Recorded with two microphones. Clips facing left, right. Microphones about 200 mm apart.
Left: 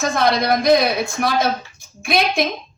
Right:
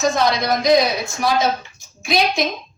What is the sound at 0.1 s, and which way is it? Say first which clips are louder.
A woman's voice: left 1 dB; 55° left (ahead or behind).